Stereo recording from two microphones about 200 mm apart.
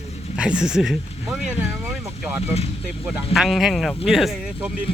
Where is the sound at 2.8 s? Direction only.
5° right (ahead or behind).